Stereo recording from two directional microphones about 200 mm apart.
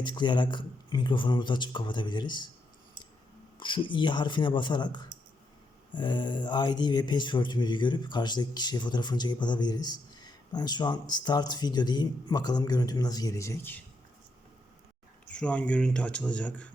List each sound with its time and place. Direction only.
0.0 s speech: 20° left (ahead or behind)
3.6 s speech: 25° left (ahead or behind)
15.3 s speech: 5° left (ahead or behind)